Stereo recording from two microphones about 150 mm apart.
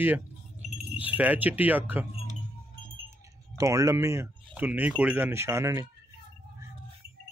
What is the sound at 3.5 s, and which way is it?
Speech, 20° right (ahead or behind).